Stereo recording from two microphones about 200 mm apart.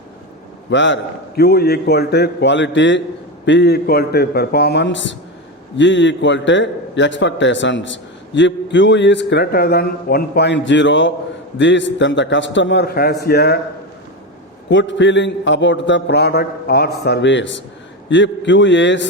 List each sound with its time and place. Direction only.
0.7 s a man's voice: 65° left (ahead or behind)
1.4 s a man's voice: 50° left (ahead or behind)
14.7 s a man's voice: 65° left (ahead or behind)